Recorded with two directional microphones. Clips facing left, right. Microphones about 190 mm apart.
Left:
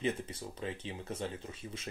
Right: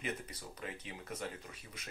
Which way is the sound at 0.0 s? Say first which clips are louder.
Left 7 dB; 30° left (ahead or behind).